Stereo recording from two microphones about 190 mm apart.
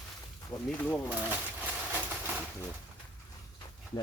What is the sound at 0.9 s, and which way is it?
Speech, 15° left (ahead or behind).